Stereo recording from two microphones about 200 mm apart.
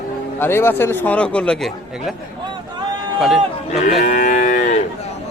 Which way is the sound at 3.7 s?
35° left (ahead or behind).